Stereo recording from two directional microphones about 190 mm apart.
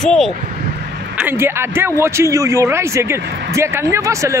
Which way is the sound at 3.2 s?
65° right (ahead or behind).